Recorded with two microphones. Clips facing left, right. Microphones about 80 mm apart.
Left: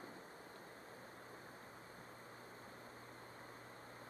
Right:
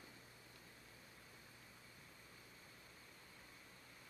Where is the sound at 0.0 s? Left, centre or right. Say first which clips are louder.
Left 8 dB; left.